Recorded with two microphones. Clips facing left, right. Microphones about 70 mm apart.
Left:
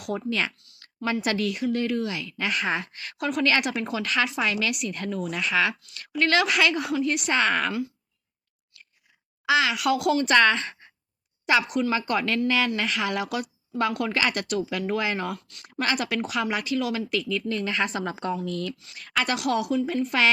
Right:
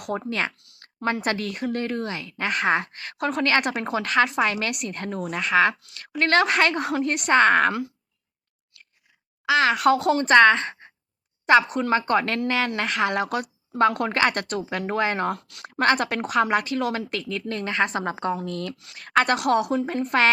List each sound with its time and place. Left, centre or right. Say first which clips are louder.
0.3 s speech: left 1 dB; right
0.5 s a woman's voice: right 1 dB; right
0.8 s a sound: right 3 dB; right
1.2 s speech: left 1 dB; right
9.5 s speech: right 4 dB; right
10.8 s sigh: right 4 dB; right
11.4 s a woman's voice: right 4 dB; right